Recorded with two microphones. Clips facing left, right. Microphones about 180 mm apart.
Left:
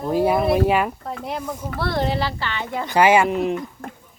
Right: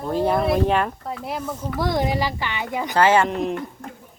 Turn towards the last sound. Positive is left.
turn(degrees=5)  # may be behind; listen again after turning